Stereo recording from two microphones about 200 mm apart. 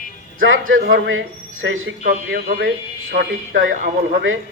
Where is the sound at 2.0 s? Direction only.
50° right (ahead or behind); by 3.7 s 70° right (ahead or behind).